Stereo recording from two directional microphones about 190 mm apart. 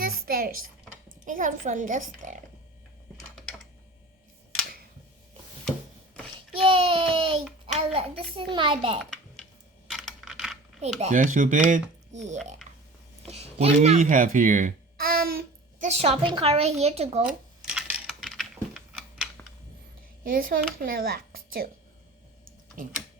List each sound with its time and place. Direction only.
0.0 s a sound: 50° right (ahead or behind)
1.2 s a child's voice: 45° right (ahead or behind)
6.7 s a sound: 30° right (ahead or behind)
7.9 s speech: 30° right (ahead or behind)
9.0 s typing: centre (ahead or behind)
9.9 s computer keyboard: centre (ahead or behind)
11.0 s speech: 40° right (ahead or behind)
15.9 s speech: 35° right (ahead or behind)
17.7 s a sound: centre (ahead or behind)
20.2 s a child's voice: 50° right (ahead or behind)
22.8 s a child's voice: 45° right (ahead or behind)